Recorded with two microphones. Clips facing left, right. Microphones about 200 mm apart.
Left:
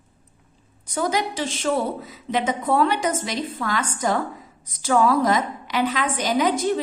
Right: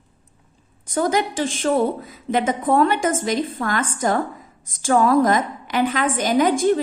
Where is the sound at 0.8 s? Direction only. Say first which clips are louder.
Right 3 dB; 50° right (ahead or behind).